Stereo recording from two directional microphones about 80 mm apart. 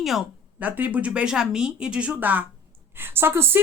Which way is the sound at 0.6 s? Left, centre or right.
Centre.